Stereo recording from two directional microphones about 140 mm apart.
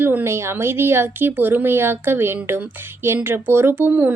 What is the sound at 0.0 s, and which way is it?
A woman's voice, 15° right (ahead or behind).